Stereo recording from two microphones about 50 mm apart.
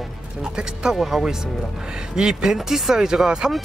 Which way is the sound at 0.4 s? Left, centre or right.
Centre.